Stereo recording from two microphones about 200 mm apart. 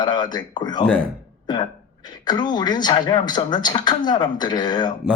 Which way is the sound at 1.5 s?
20° left (ahead or behind).